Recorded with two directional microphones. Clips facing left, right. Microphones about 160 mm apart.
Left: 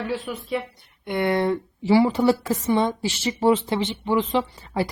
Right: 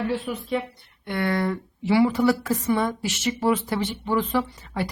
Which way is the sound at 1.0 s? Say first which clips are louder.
Left 3 dB; 20° left (ahead or behind).